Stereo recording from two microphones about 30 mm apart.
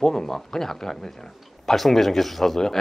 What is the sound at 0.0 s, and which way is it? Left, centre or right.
Speech, centre.